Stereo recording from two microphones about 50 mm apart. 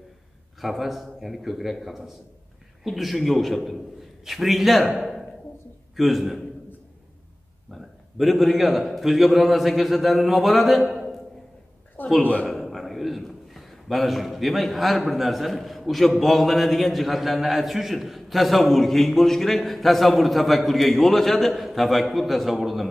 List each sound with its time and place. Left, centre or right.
0.6 s a man's voice: centre
5.9 s a man's voice: centre
7.7 s a man's voice: centre
12.2 s a man's voice: left
12.4 s a man's voice: centre